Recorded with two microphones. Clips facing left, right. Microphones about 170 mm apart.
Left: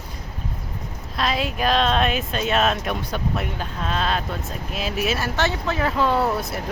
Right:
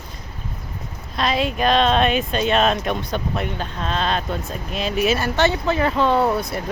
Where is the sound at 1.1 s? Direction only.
Centre (ahead or behind).